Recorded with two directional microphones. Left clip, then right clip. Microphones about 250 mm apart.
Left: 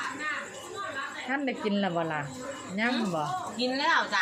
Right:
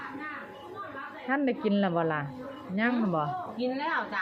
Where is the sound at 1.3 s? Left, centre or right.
Centre.